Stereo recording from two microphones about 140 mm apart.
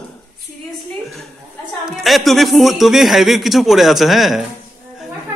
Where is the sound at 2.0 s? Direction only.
Centre (ahead or behind).